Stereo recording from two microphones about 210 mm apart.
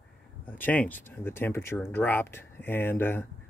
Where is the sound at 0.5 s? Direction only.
10° left (ahead or behind).